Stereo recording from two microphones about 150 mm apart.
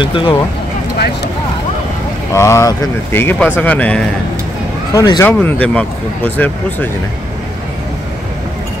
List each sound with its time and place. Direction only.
0.0 s speech: 35° left (ahead or behind)
2.3 s speech: 20° left (ahead or behind)
4.9 s speech: 30° left (ahead or behind)
5.2 s speech: 10° left (ahead or behind)